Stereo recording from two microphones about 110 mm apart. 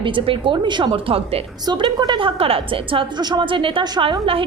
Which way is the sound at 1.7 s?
40° right (ahead or behind).